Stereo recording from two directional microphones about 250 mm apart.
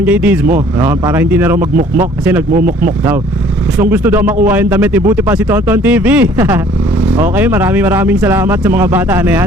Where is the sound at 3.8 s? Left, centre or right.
Centre.